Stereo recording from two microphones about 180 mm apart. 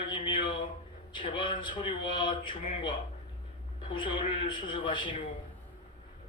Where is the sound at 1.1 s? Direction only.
25° left (ahead or behind).